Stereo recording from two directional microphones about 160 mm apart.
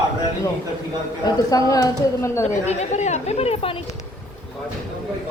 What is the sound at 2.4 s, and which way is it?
Speech, 45° left (ahead or behind).